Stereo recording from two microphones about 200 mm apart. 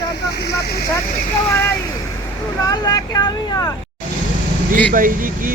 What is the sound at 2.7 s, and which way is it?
Speech, 20° left (ahead or behind).